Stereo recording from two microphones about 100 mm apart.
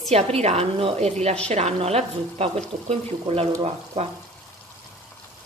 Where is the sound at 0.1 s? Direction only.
90° right.